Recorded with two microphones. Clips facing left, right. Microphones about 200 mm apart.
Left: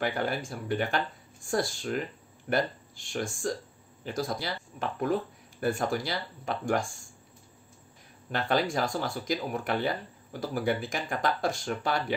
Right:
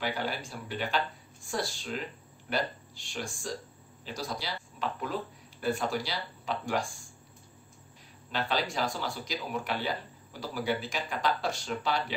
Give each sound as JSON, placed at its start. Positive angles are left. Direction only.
{"t": 0.0, "sound": "speech", "side_deg": 50}
{"t": 8.3, "sound": "speech", "side_deg": 50}